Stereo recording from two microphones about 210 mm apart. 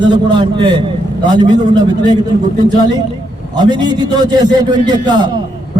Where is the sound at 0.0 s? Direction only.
20° right (ahead or behind).